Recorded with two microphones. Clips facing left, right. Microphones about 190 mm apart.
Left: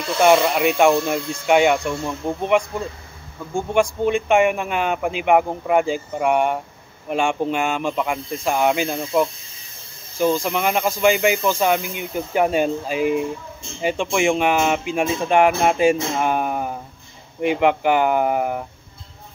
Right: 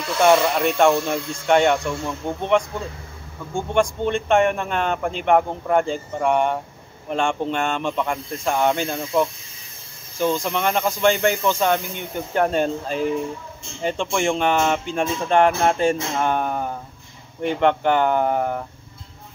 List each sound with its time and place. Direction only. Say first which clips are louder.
0.2 s speech: left 1 dB; 5° left (ahead or behind)